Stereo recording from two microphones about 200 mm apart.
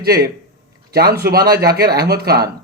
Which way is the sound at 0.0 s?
50° right (ahead or behind).